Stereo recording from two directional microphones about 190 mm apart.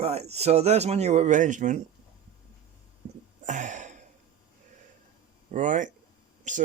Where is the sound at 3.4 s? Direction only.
40° right (ahead or behind).